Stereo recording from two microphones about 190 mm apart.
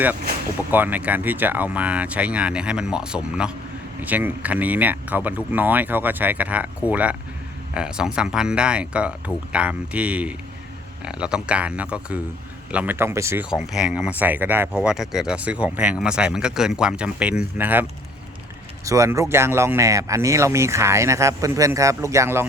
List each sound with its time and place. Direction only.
0.7 s speech: 10° right (ahead or behind)
18.9 s speech: 15° right (ahead or behind)